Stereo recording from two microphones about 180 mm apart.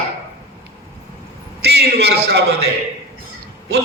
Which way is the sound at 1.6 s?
65° right (ahead or behind).